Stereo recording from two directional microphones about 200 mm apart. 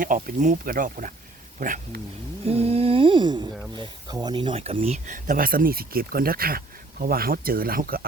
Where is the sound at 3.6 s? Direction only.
20° right (ahead or behind).